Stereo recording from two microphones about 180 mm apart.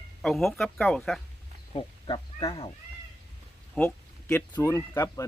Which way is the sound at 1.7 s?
30° left (ahead or behind).